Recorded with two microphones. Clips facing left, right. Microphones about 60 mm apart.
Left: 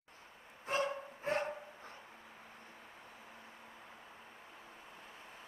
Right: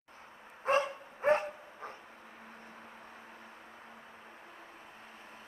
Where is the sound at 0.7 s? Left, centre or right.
Right.